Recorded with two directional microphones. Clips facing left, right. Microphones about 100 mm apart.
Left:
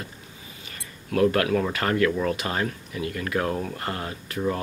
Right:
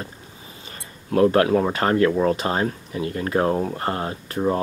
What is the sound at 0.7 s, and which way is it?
Speech, 30° right (ahead or behind).